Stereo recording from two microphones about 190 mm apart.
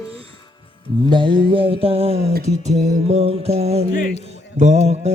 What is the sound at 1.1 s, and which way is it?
Speech, 25° right (ahead or behind).